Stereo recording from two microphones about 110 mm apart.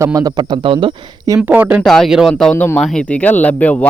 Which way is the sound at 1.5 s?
15° right (ahead or behind).